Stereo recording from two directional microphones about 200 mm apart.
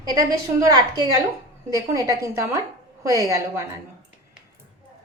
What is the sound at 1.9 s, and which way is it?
A woman's voice, 15° right (ahead or behind).